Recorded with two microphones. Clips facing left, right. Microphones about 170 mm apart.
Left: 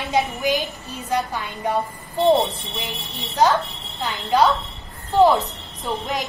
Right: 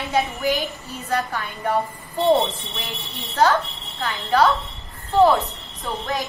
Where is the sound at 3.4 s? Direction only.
15° left (ahead or behind).